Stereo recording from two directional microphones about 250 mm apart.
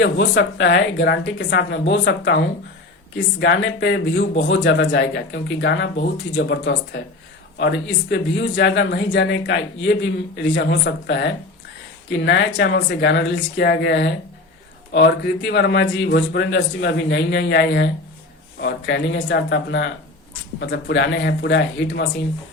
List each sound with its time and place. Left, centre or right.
0.0 s speech: left
3.4 s speech: left